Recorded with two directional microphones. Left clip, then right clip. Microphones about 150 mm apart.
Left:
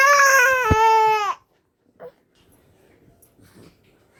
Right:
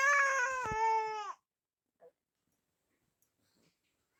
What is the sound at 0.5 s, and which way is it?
Baby cry, 25° left (ahead or behind).